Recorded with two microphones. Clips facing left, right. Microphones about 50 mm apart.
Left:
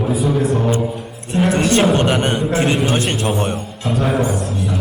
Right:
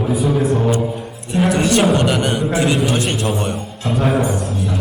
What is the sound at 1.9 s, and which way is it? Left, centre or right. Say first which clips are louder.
A man's voice: even; left.